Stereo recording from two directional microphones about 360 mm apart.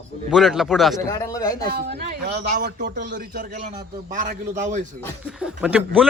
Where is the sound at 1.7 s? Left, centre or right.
Right.